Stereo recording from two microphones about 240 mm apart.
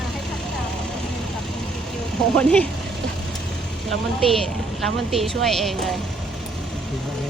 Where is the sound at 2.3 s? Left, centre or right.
Centre.